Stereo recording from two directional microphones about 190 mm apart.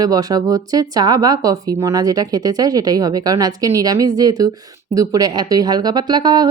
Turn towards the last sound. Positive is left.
turn(degrees=-20)  # may be behind; listen again after turning